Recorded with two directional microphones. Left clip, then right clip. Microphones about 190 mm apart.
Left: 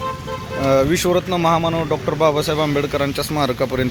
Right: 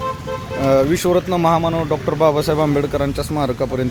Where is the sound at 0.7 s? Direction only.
15° right (ahead or behind).